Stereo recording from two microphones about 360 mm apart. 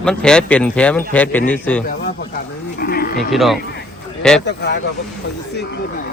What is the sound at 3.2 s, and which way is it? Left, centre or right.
Speech, centre.